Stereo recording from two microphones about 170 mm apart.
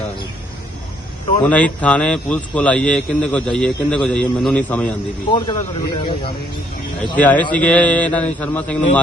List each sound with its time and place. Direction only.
1.4 s speech: 10° left (ahead or behind)
5.3 s speech: 25° left (ahead or behind)
7.2 s speech: 10° left (ahead or behind)